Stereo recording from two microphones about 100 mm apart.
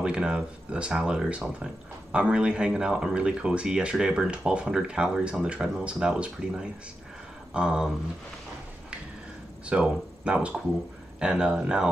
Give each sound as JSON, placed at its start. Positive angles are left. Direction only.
{"t": 0.0, "sound": "speech", "side_deg": -10}
{"t": 9.7, "sound": "speech", "side_deg": -10}